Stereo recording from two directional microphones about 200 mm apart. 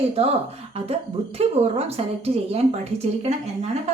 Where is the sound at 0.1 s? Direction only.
30° right (ahead or behind).